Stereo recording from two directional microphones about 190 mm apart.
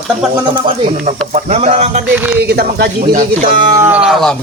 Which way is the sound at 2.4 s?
55° right (ahead or behind).